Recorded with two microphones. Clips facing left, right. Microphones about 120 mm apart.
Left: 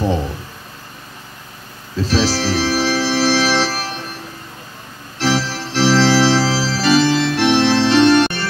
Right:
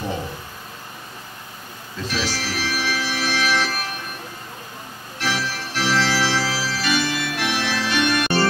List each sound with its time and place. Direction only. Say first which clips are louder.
2.0 s organ: left 9 dB; 35° left (ahead or behind)
5.2 s organ: left 7 dB; 30° left (ahead or behind)